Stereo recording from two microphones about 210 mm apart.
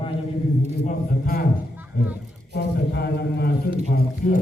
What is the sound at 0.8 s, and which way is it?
A man's voice, 45° left (ahead or behind).